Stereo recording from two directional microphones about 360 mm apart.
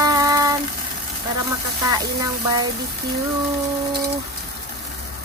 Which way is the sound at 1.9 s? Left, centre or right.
Centre.